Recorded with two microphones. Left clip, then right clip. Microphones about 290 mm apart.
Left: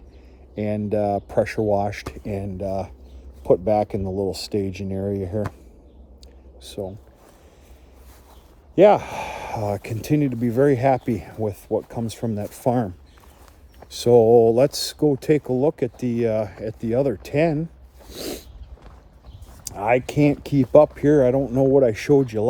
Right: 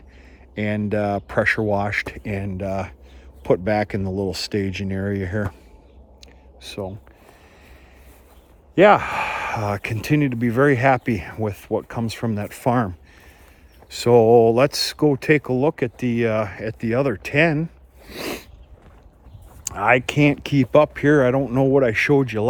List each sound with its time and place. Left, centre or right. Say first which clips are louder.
0.5 s speech: even; right
6.6 s speech: right 1 dB; right
8.7 s speech: right 1 dB; right
13.9 s speech: right 1 dB; right
18.1 s a sound: right 3 dB; right
19.6 s speech: right 3 dB; right